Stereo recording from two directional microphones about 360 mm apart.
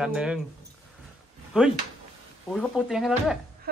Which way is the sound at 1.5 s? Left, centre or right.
Centre.